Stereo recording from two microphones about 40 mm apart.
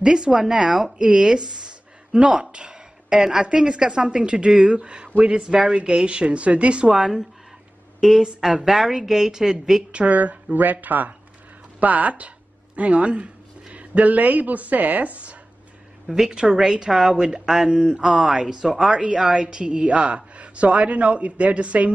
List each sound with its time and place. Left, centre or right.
0.0 s a woman's voice: centre
6.9 s a woman's voice: centre
9.9 s speech: right
16.3 s a woman's voice: right